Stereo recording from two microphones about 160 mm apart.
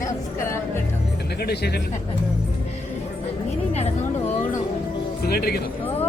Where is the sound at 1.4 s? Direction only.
90° left.